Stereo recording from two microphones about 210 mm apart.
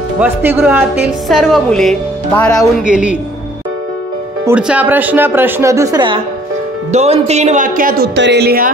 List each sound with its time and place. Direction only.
0.2 s a woman's voice: 10° right (ahead or behind)
4.5 s a woman's voice: 5° right (ahead or behind)
6.9 s speech: 30° right (ahead or behind)
8.1 s a woman's voice: 55° right (ahead or behind)